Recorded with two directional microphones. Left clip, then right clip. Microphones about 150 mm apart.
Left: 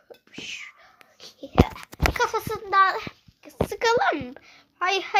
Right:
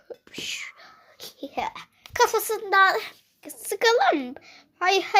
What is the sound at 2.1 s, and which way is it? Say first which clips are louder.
A child's voice: right 9 dB; 50° right (ahead or behind).